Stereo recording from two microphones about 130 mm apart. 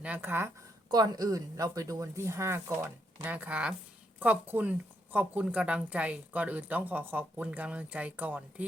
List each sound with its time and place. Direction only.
0.0 s a woman's voice: 15° right (ahead or behind)
0.9 s speech: 30° right (ahead or behind)
3.2 s a woman's voice: 10° right (ahead or behind)